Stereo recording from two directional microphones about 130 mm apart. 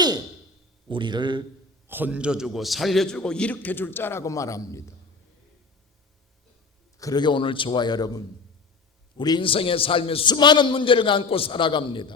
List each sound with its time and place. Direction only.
0.9 s a man's voice: 40° right (ahead or behind)
1.9 s a man's voice: 15° right (ahead or behind); by 4.9 s 25° left (ahead or behind)
7.0 s a man's voice: 30° left (ahead or behind)